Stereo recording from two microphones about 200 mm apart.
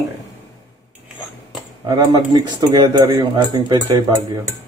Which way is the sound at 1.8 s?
20° right (ahead or behind).